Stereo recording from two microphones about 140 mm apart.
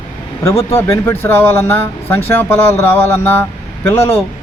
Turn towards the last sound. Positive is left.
turn(degrees=45)  # may be behind; listen again after turning